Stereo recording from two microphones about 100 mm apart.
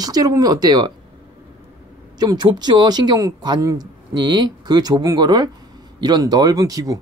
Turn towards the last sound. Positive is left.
turn(degrees=-35)  # may be behind; listen again after turning